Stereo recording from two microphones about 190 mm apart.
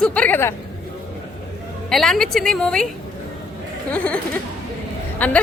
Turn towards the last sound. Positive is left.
turn(degrees=10)  # may be behind; listen again after turning